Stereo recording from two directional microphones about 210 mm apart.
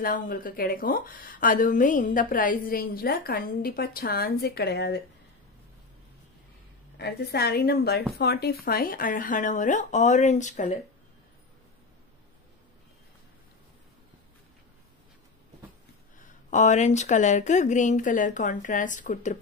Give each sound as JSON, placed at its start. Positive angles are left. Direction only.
{"t": 0.0, "sound": "speech", "side_deg": 40}
{"t": 7.0, "sound": "a woman's voice", "side_deg": 50}
{"t": 16.4, "sound": "a woman's voice", "side_deg": 35}